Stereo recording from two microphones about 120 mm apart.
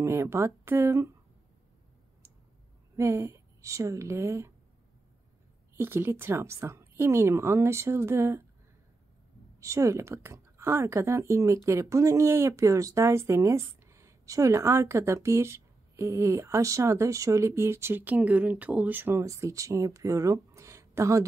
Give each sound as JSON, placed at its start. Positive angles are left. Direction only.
{"t": 0.0, "sound": "speech", "side_deg": -25}
{"t": 3.0, "sound": "a woman's voice", "side_deg": -25}
{"t": 5.8, "sound": "speech", "side_deg": -20}
{"t": 9.6, "sound": "speech", "side_deg": -25}